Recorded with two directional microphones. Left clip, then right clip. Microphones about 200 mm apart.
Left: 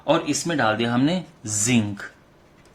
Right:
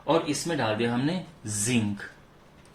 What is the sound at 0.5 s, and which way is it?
Speech, 40° left (ahead or behind).